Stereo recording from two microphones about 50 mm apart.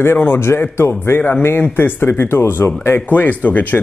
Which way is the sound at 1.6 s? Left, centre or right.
Left.